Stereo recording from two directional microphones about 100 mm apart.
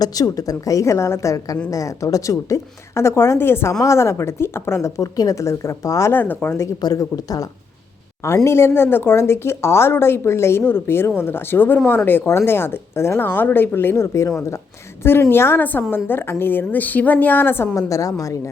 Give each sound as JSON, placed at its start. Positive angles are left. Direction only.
{"t": 0.0, "sound": "a woman's voice", "side_deg": 35}
{"t": 6.8, "sound": "a woman's voice", "side_deg": 40}
{"t": 8.4, "sound": "speech", "side_deg": 25}
{"t": 17.7, "sound": "a woman's voice", "side_deg": 35}